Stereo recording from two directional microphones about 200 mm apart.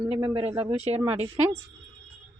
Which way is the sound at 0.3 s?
25° right (ahead or behind).